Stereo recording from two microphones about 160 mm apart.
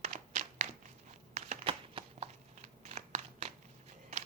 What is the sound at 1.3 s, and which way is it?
Crumpling, 45° right (ahead or behind).